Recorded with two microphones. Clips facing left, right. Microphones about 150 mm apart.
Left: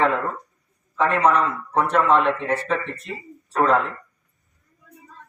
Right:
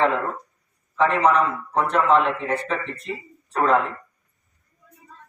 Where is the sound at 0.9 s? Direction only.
Centre (ahead or behind).